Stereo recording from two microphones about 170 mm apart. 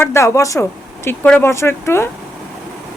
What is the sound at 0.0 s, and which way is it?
Speech, 15° left (ahead or behind).